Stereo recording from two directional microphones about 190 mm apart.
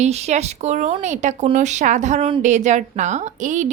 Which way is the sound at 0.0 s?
35° right (ahead or behind).